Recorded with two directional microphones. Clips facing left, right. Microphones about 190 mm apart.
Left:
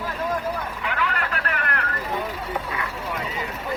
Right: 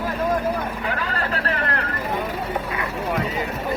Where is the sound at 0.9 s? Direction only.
35° right (ahead or behind).